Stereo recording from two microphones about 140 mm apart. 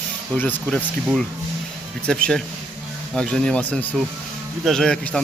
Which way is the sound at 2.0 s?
5° left (ahead or behind).